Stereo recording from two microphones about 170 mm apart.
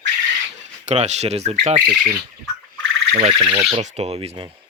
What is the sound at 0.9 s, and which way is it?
Speech, 40° right (ahead or behind).